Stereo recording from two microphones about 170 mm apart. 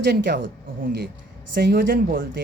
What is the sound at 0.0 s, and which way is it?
Speech, 90° right.